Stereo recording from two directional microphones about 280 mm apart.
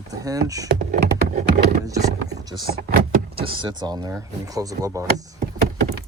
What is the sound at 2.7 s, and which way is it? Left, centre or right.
Speech, right.